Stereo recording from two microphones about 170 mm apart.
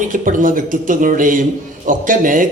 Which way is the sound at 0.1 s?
50° right (ahead or behind).